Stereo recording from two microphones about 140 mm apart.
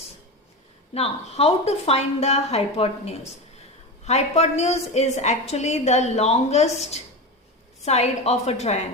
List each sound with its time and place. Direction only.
0.9 s a woman's voice: 45° left (ahead or behind)